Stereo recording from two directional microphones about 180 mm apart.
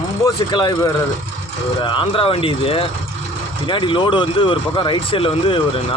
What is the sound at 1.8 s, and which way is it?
Speech, 25° left (ahead or behind).